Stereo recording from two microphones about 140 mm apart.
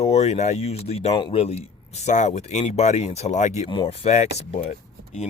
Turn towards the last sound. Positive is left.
turn(degrees=55)  # may be behind; listen again after turning